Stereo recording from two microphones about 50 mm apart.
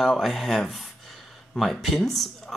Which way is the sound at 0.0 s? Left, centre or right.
Centre.